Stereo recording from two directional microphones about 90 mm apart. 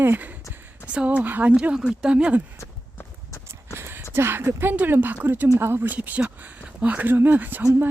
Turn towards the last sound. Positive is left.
turn(degrees=-20)  # may be behind; listen again after turning